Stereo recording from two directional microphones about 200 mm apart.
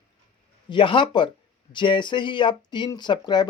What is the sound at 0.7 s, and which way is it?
Speech, 25° left (ahead or behind).